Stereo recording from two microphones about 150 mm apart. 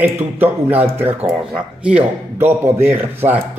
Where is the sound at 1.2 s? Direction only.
5° right (ahead or behind).